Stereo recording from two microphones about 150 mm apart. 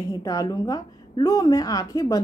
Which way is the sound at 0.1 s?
25° left (ahead or behind).